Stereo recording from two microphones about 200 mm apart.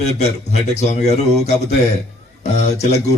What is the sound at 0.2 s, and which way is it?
A man's voice, 35° left (ahead or behind).